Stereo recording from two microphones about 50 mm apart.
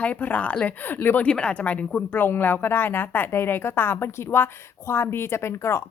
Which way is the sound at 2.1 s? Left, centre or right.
Left.